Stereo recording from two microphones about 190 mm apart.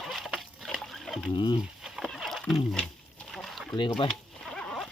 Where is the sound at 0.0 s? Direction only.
Centre (ahead or behind).